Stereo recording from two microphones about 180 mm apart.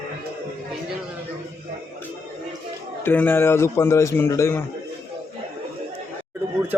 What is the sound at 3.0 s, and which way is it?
A man's voice, 10° left (ahead or behind).